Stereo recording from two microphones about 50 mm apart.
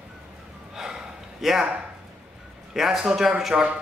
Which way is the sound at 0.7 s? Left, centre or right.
Centre.